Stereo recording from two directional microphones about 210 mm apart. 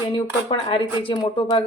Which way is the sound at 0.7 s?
25° left (ahead or behind).